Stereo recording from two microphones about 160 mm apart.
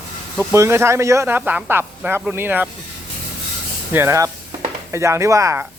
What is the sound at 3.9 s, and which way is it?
Speech, 15° right (ahead or behind).